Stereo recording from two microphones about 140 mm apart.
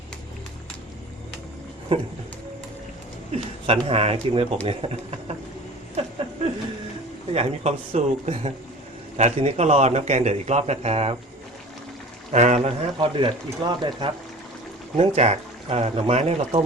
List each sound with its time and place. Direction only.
1.9 s a man's voice: 40° right (ahead or behind)
3.3 s a man's voice: 45° right (ahead or behind)
7.3 s a man's voice: 50° right (ahead or behind)
12.3 s a man's voice: 55° right (ahead or behind); by 14.1 s 30° right (ahead or behind)
14.9 s a man's voice: 45° right (ahead or behind)